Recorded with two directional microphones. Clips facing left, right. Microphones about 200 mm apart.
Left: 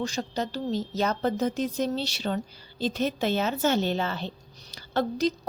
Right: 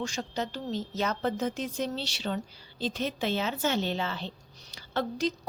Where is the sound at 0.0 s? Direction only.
35° left (ahead or behind).